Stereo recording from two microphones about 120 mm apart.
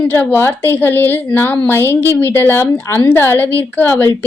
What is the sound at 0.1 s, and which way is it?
A woman's voice, 15° left (ahead or behind).